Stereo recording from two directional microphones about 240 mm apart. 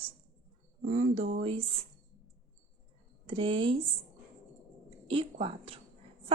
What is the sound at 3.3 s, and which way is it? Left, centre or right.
Speech, right.